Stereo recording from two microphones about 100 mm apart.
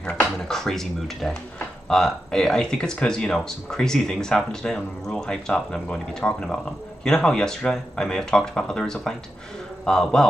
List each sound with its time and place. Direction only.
0.4 s speech: 5° left (ahead or behind)